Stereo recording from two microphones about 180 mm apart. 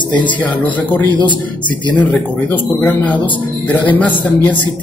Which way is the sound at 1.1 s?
25° left (ahead or behind).